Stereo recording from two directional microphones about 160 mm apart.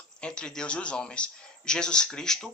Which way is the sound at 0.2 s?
5° left (ahead or behind).